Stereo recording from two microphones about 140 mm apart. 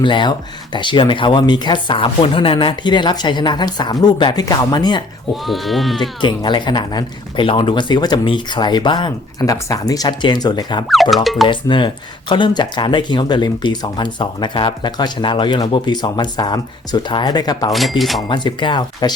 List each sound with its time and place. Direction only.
0.0 s speech: 35° left (ahead or behind)
5.3 s speech: centre (ahead or behind)
6.2 s speech: 35° left (ahead or behind)
10.8 s speech: centre (ahead or behind)
11.4 s speech: 35° left (ahead or behind)
17.7 s speech: centre (ahead or behind)
18.3 s speech: 35° left (ahead or behind)